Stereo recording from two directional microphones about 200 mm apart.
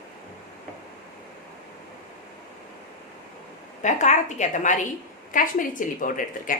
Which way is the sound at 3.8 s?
35° left (ahead or behind).